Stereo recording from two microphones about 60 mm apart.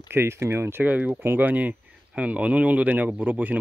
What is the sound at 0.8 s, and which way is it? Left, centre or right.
Speech, right.